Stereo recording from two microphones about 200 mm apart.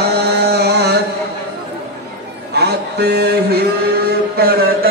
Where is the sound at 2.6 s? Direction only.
55° right (ahead or behind).